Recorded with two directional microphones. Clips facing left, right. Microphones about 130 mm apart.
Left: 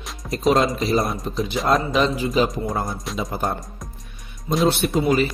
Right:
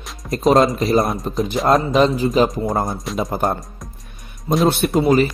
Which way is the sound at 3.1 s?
Centre (ahead or behind).